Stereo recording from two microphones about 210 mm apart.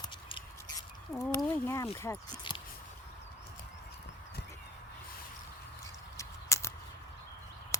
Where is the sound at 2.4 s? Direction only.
20° left (ahead or behind).